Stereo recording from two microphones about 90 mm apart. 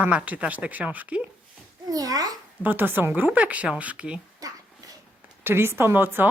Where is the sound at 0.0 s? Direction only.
15° right (ahead or behind).